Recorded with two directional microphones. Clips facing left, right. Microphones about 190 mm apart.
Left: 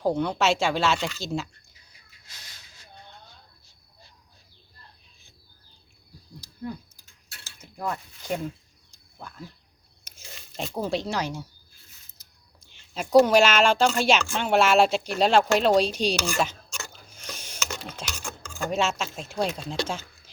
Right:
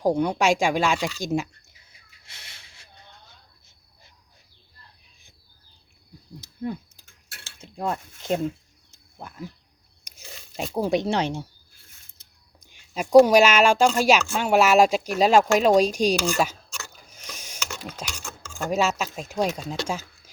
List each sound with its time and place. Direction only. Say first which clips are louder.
0.0 s speech: right 3 dB; 15° right (ahead or behind)
2.2 s a sound: right 1 dB; 25° right (ahead or behind)
6.4 s a sound: right 4 dB; 25° right (ahead or behind)
10.1 s crunch: right 1 dB; 10° right (ahead or behind)
10.6 s speech: right 5 dB; 15° right (ahead or behind)
12.5 s speech: right 3 dB; 10° right (ahead or behind)
16.9 s a sound: left 2 dB; 10° right (ahead or behind)
18.0 s stir: even; centre (ahead or behind)
18.6 s speech: right 2 dB; 10° right (ahead or behind)